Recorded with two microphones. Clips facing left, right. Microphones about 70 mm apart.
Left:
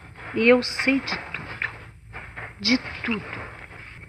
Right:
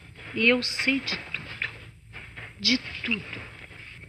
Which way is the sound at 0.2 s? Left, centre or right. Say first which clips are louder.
Left 6 dB; left.